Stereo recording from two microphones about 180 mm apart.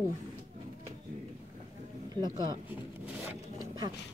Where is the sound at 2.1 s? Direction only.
25° right (ahead or behind).